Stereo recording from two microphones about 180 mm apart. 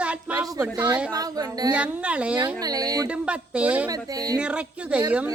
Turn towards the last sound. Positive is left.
turn(degrees=-5)  # may be behind; listen again after turning